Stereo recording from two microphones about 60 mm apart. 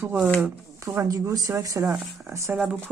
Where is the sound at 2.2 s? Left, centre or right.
Right.